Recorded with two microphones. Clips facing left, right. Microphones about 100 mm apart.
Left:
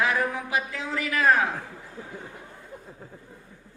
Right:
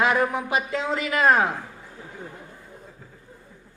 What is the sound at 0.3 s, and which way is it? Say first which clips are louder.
A woman's voice: right 4 dB; 20° right (ahead or behind).